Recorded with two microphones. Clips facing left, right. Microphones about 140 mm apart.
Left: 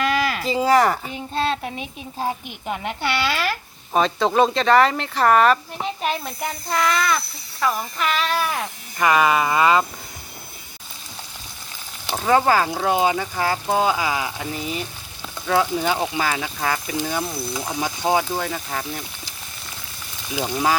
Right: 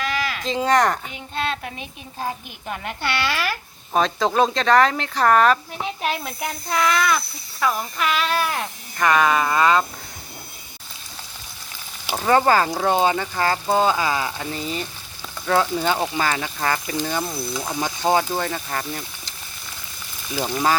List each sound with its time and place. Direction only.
0.0 s a sound: 50° left (ahead or behind)
0.4 s speech: 5° left (ahead or behind)
1.1 s a woman's voice: 30° left (ahead or behind)
3.9 s speech: centre (ahead or behind)
12.0 s speech: centre (ahead or behind)
20.4 s speech: 5° left (ahead or behind)